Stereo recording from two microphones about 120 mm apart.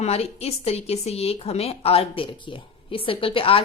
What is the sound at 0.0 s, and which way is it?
Speech, 60° left (ahead or behind).